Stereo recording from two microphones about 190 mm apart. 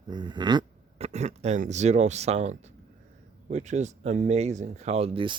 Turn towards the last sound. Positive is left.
turn(degrees=-30)  # may be behind; listen again after turning